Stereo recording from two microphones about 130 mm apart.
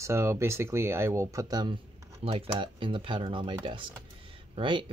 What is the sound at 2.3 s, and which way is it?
Speech, 45° right (ahead or behind).